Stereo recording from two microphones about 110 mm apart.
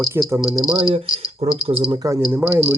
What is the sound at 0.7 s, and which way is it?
Speech, 55° right (ahead or behind).